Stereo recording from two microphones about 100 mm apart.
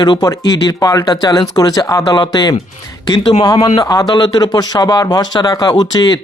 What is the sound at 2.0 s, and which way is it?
Speech, 45° left (ahead or behind).